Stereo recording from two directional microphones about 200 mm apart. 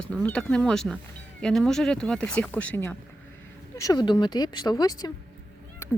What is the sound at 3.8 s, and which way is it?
Speech, 20° left (ahead or behind).